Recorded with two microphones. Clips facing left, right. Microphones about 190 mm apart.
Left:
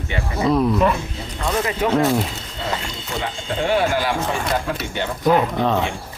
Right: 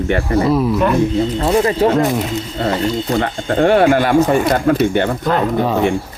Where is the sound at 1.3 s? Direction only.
35° right (ahead or behind).